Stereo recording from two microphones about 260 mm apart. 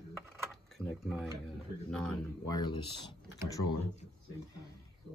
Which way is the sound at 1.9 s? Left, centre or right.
Centre.